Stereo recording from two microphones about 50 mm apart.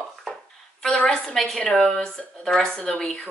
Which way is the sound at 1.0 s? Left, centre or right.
Centre.